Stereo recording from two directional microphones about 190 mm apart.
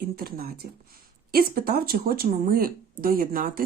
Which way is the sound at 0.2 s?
50° right (ahead or behind).